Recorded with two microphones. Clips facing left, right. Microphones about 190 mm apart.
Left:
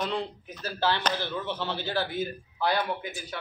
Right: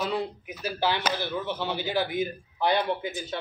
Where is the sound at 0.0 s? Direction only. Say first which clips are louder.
Right 2 dB; 5° right (ahead or behind).